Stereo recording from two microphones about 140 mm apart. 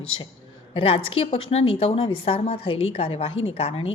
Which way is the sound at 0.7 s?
40° left (ahead or behind).